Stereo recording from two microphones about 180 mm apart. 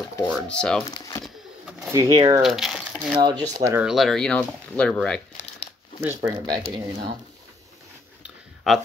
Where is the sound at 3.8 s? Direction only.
Centre (ahead or behind).